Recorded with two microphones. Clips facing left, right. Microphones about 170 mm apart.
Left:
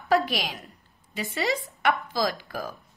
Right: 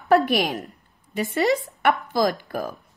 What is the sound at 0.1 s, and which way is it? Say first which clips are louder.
A woman's voice: right 6 dB; 55° right (ahead or behind).